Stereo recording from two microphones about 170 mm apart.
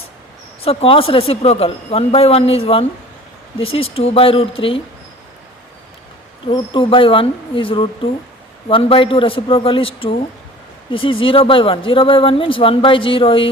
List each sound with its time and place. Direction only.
0.6 s a woman's voice: 35° left (ahead or behind)
6.5 s a woman's voice: 30° left (ahead or behind)